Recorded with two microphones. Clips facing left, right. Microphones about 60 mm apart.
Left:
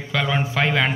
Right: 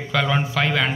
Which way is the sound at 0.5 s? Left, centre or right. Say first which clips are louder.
Left 3 dB; centre.